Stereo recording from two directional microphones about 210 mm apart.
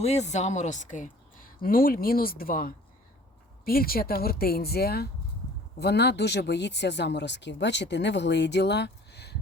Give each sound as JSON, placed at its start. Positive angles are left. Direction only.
{"t": 0.0, "sound": "a woman's voice", "side_deg": 30}